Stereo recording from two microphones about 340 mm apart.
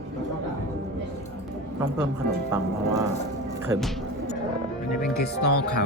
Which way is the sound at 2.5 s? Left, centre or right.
Centre.